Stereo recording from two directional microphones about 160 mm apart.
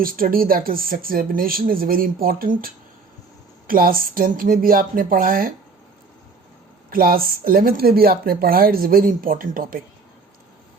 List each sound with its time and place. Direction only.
0.0 s speech: 65° right (ahead or behind)
6.9 s speech: 65° right (ahead or behind)